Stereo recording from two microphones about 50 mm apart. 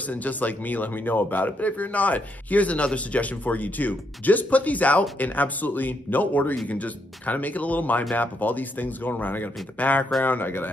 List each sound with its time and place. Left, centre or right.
0.0 s speech: left